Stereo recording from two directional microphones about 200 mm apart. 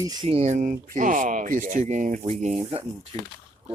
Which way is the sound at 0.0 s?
20° right (ahead or behind).